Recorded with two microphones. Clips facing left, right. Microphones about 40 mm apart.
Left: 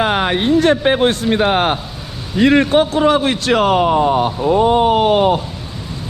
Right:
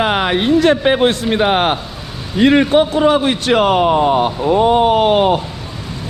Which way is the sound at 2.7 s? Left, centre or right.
Left.